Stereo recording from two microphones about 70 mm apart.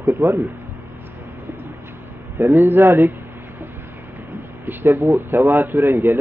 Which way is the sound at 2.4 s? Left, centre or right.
Right.